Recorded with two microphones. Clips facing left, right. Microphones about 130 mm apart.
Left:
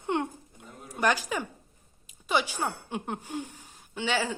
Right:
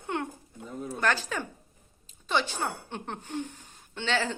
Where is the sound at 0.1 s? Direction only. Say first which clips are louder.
Left 3 dB; 20° left (ahead or behind).